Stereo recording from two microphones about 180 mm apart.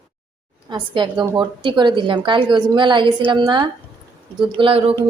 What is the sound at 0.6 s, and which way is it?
A woman's voice, 25° right (ahead or behind).